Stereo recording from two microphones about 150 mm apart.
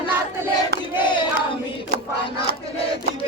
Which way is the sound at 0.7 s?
90° right.